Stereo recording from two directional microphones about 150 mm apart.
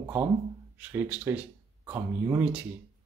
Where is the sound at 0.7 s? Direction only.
10° right (ahead or behind).